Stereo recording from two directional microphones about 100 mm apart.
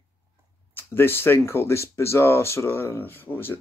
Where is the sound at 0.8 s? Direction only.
25° left (ahead or behind).